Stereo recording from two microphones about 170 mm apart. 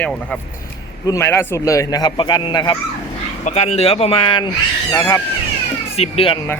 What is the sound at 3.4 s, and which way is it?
Speech, 40° left (ahead or behind).